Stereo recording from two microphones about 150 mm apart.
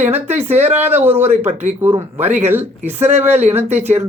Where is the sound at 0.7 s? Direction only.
15° right (ahead or behind).